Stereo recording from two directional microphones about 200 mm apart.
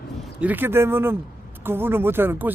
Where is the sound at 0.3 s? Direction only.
10° right (ahead or behind).